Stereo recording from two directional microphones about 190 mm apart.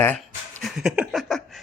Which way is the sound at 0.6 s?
5° right (ahead or behind).